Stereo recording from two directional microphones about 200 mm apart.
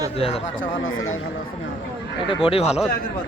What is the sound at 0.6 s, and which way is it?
Speech, 80° left.